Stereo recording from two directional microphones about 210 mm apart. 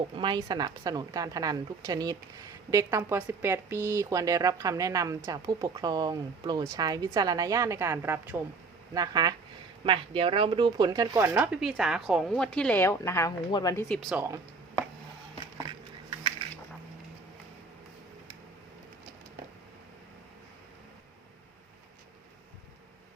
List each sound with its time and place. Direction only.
0.2 s speech: 20° right (ahead or behind)
11.3 s speech: 5° right (ahead or behind)